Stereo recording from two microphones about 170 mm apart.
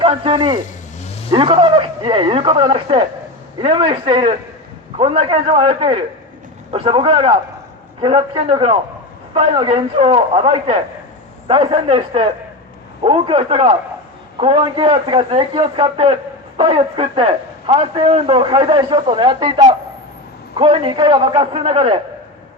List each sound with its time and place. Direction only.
0.0 s a man's voice: 30° right (ahead or behind)